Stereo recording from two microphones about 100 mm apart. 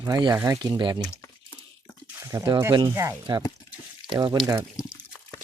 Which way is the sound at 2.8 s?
30° right (ahead or behind).